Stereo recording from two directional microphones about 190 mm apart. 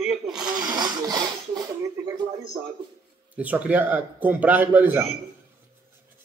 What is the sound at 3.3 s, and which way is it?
A man's voice, 5° right (ahead or behind).